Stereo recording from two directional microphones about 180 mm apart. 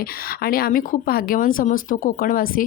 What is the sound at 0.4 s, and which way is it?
Speech, 55° left (ahead or behind).